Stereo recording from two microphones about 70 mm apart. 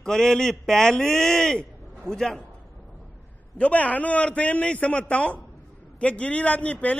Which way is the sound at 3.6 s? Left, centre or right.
Centre.